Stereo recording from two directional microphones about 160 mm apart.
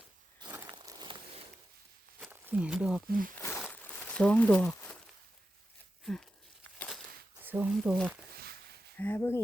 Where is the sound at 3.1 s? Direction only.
60° right (ahead or behind).